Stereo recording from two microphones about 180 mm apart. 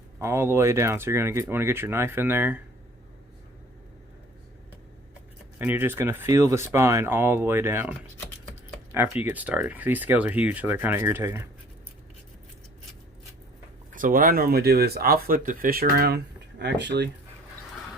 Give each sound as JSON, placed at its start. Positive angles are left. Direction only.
{"t": 0.2, "sound": "speech", "side_deg": -15}
{"t": 5.5, "sound": "speech", "side_deg": -10}
{"t": 13.9, "sound": "speech", "side_deg": -50}